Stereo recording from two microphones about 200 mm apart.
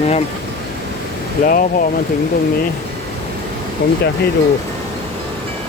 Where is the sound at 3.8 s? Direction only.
55° left (ahead or behind).